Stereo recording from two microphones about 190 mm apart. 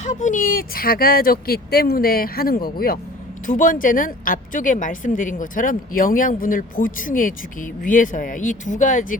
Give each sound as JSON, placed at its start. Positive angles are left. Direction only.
{"t": 0.0, "sound": "a woman's voice", "side_deg": 40}